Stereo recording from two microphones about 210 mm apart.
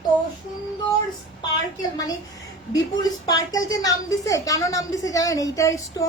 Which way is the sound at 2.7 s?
20° left (ahead or behind).